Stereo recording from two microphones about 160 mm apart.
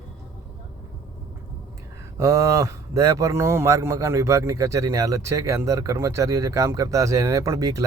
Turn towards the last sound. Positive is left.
turn(degrees=-20)  # may be behind; listen again after turning